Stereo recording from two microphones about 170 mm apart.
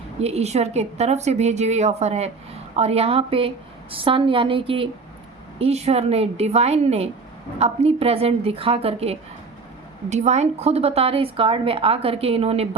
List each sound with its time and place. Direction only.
0.2 s a woman's voice: 40° right (ahead or behind)